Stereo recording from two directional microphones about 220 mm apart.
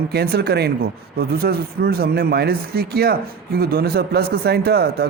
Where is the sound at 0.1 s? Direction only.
45° right (ahead or behind).